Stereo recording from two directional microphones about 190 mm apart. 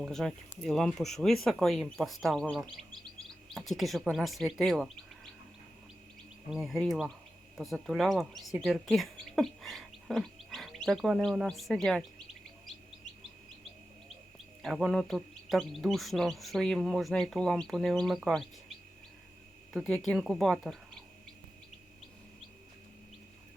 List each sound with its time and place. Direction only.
0.0 s speech: centre (ahead or behind)
6.5 s speech: centre (ahead or behind)
14.6 s speech: centre (ahead or behind)
19.7 s speech: centre (ahead or behind)